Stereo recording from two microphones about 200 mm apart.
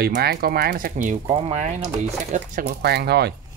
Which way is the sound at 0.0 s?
55° right (ahead or behind).